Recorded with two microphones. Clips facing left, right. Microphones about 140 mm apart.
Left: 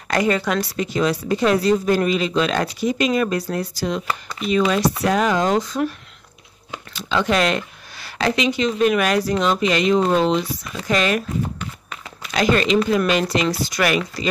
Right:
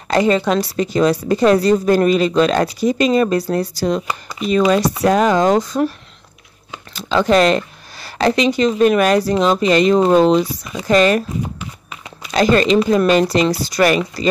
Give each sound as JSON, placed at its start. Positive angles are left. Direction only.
{"t": 0.1, "sound": "a woman's voice", "side_deg": -25}
{"t": 0.9, "sound": "speech", "side_deg": -40}
{"t": 4.1, "sound": "speech", "side_deg": 0}
{"t": 5.0, "sound": "speech", "side_deg": -40}
{"t": 11.5, "sound": "clip-clop", "side_deg": -5}
{"t": 12.3, "sound": "speech", "side_deg": -35}